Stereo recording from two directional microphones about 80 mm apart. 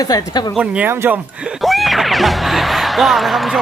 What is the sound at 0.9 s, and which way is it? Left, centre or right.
Speech, right.